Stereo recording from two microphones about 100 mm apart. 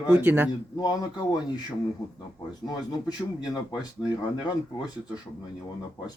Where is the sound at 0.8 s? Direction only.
40° left (ahead or behind).